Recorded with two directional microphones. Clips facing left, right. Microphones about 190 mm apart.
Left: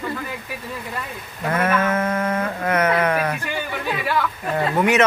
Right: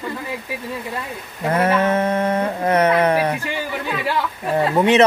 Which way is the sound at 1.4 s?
35° right (ahead or behind).